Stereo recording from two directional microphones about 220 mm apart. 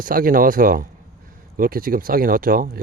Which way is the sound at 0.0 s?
40° right (ahead or behind).